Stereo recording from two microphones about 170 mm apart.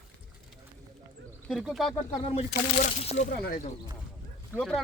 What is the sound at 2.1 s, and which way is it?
Speech, 30° left (ahead or behind).